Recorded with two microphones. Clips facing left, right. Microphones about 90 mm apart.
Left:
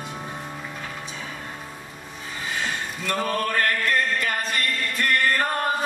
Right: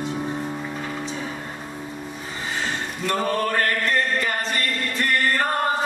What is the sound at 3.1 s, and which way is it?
Chant, 30° right (ahead or behind).